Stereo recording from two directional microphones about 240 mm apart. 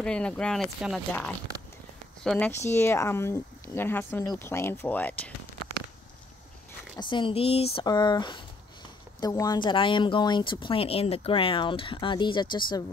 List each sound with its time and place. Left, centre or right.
0.0 s speech: centre
7.0 s speech: centre